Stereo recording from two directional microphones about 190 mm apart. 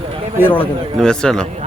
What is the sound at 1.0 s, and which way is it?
Speech, 5° left (ahead or behind).